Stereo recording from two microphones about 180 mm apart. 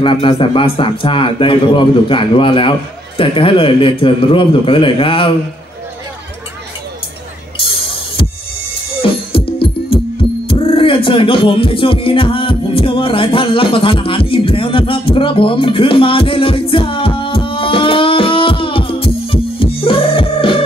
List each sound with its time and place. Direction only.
0.0 s a man's voice: 30° left (ahead or behind)
7.6 s a sound: 30° left (ahead or behind)
9.0 s music: 30° left (ahead or behind)